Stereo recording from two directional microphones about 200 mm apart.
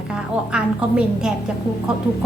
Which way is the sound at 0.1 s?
5° right (ahead or behind).